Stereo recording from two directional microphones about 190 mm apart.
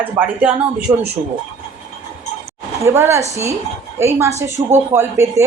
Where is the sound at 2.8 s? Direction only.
15° right (ahead or behind).